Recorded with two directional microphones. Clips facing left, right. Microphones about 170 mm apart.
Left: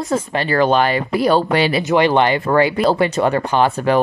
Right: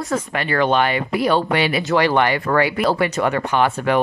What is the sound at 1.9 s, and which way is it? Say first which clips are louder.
Speech: left 3 dB; 20° left (ahead or behind).